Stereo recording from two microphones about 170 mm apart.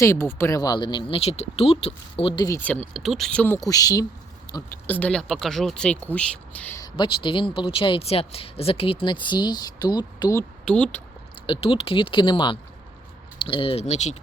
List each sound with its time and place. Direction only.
0.0 s speech: 15° left (ahead or behind)
2.6 s speech: 10° left (ahead or behind)
3.7 s speech: 20° left (ahead or behind)
4.5 s a sound: 25° left (ahead or behind)
4.9 s speech: 10° left (ahead or behind)
6.8 s speech: 30° left (ahead or behind)
10.7 s speech: 5° left (ahead or behind)
11.4 s speech: 30° left (ahead or behind)